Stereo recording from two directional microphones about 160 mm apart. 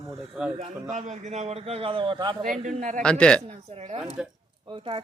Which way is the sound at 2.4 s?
50° right (ahead or behind).